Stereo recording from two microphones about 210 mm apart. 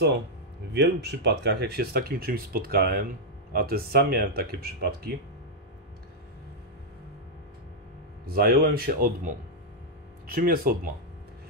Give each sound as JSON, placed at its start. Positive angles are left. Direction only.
{"t": 0.7, "sound": "speech", "side_deg": -55}
{"t": 8.3, "sound": "speech", "side_deg": -45}